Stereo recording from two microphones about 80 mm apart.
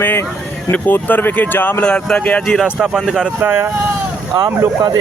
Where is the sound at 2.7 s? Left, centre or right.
Centre.